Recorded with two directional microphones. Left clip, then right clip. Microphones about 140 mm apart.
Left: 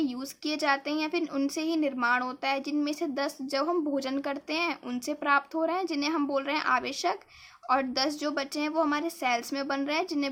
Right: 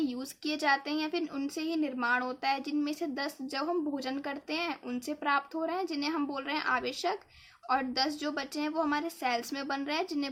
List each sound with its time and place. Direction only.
0.0 s a woman's voice: 25° left (ahead or behind)